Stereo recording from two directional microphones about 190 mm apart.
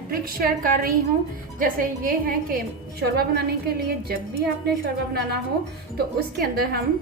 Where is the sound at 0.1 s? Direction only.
50° right (ahead or behind).